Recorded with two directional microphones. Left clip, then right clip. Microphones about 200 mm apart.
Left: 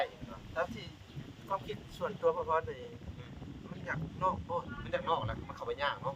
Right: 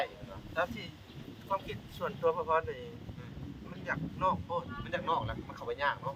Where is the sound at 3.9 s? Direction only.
20° right (ahead or behind).